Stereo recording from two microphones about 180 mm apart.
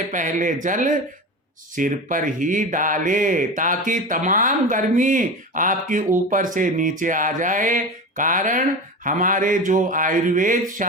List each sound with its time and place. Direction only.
0.1 s speech: 45° right (ahead or behind)